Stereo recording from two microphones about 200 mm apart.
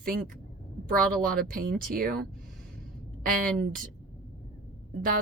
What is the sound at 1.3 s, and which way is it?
Speech, 45° right (ahead or behind).